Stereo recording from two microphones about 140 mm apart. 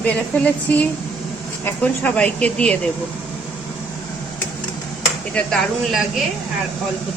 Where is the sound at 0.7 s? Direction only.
10° left (ahead or behind).